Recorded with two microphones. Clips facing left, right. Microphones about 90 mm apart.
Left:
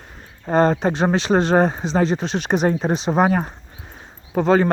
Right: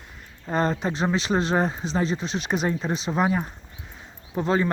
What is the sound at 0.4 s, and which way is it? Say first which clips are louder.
Speech: left 8 dB; 45° left (ahead or behind).